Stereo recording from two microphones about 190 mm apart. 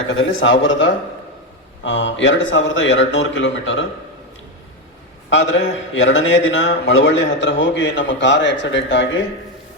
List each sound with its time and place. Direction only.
0.1 s a man's voice: 85° left
5.3 s a man's voice: 85° left; by 9.0 s 70° left (ahead or behind)